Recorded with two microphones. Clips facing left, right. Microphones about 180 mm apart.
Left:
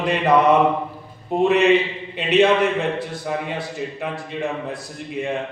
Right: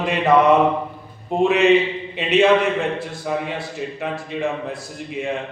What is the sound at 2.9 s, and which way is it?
A man's voice, centre (ahead or behind).